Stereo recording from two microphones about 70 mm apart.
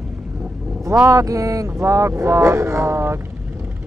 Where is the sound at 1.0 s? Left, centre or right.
Right.